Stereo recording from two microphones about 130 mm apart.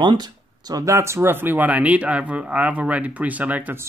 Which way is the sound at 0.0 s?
35° right (ahead or behind).